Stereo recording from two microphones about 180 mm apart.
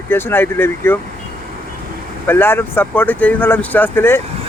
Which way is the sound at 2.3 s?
10° left (ahead or behind).